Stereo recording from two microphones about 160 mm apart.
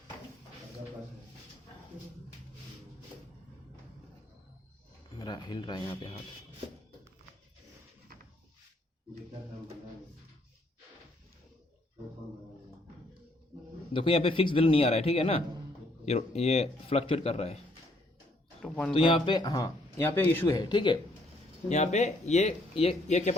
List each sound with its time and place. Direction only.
5.2 s speech: 25° left (ahead or behind)
13.9 s a man's voice: 35° left (ahead or behind)
18.6 s speech: 5° left (ahead or behind)
18.9 s speech: 30° left (ahead or behind); by 20.6 s 15° left (ahead or behind)
20.6 s speech: 30° left (ahead or behind)
21.7 s speech: 45° left (ahead or behind)